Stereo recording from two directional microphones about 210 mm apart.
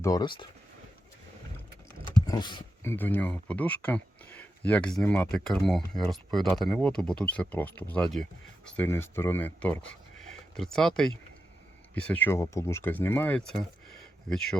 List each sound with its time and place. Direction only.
0.0 s speech: 20° left (ahead or behind)
2.2 s a sound: 20° left (ahead or behind)
2.9 s speech: 10° left (ahead or behind)